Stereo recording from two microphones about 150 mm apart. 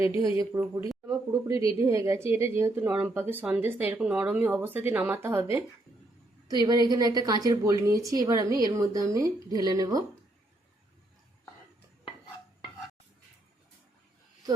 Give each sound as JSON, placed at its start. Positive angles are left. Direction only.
{"t": 0.0, "sound": "a woman's voice", "side_deg": -20}
{"t": 6.5, "sound": "a woman's voice", "side_deg": -25}